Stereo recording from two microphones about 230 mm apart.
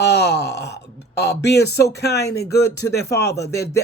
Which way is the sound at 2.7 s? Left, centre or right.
Centre.